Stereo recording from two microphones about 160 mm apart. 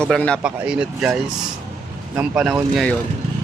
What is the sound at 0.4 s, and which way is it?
Speech, 5° right (ahead or behind).